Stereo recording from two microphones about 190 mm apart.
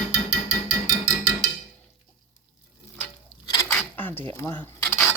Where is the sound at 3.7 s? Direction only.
10° left (ahead or behind).